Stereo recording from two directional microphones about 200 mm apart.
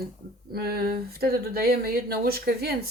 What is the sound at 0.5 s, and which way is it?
Speech, 50° right (ahead or behind).